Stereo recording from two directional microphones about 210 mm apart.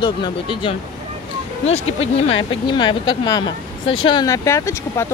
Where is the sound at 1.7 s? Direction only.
75° left (ahead or behind).